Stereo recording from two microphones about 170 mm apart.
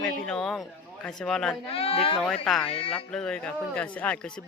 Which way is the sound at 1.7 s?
35° left (ahead or behind).